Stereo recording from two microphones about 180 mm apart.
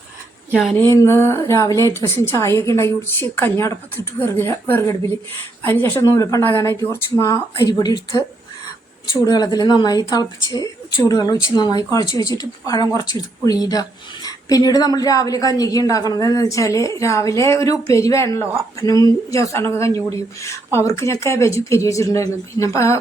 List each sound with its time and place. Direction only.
0.5 s speech: centre (ahead or behind)
0.9 s speech: 15° left (ahead or behind)
9.2 s speech: 20° left (ahead or behind)